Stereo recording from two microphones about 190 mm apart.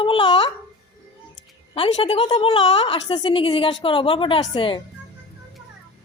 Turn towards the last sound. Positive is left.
turn(degrees=25)  # may be behind; listen again after turning